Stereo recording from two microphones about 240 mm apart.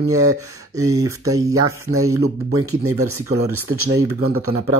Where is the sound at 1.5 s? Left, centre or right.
Right.